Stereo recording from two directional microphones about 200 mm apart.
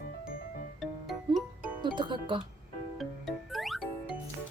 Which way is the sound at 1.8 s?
25° right (ahead or behind).